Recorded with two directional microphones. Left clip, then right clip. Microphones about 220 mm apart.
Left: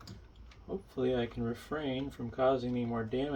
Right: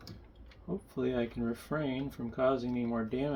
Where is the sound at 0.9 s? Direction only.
35° right (ahead or behind).